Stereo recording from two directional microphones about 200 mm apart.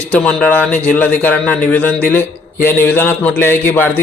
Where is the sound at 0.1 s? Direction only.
5° left (ahead or behind).